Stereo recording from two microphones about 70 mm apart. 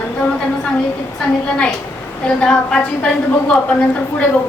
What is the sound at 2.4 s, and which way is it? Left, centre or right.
Speech, centre.